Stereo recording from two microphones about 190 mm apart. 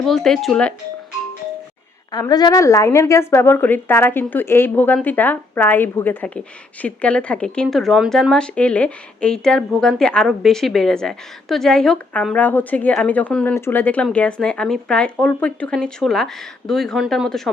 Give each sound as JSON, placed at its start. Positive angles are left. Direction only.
{"t": 0.0, "sound": "speech", "side_deg": 0}
{"t": 2.1, "sound": "a woman's voice", "side_deg": 20}